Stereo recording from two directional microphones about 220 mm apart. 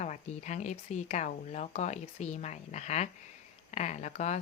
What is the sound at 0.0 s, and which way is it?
Speech, 35° left (ahead or behind).